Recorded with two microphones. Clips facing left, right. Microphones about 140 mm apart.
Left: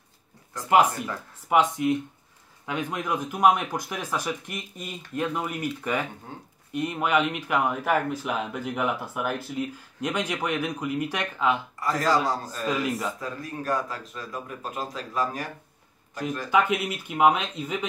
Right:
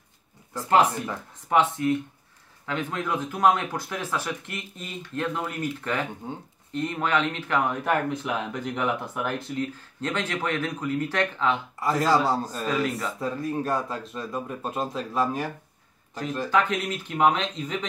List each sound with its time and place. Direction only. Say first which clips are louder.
0.6 s speech: even; 15° left (ahead or behind)
6.3 s speech: right 5 dB; 20° right (ahead or behind)
6.7 s speech: left 1 dB; 10° left (ahead or behind)
11.8 s speech: right 2 dB; 25° right (ahead or behind)
16.4 s speech: left 1 dB; 10° left (ahead or behind)